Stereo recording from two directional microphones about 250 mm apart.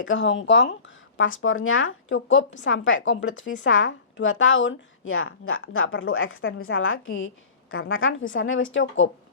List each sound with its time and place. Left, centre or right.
0.0 s a woman's voice: left